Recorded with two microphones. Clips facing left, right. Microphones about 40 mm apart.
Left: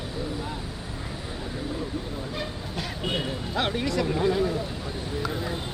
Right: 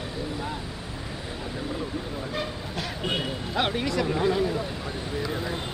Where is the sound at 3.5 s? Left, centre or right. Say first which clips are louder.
Right 1 dB; centre.